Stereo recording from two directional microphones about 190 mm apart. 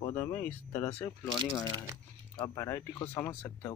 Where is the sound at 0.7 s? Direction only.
30° left (ahead or behind).